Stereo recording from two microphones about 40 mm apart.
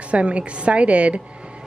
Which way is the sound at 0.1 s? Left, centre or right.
Right.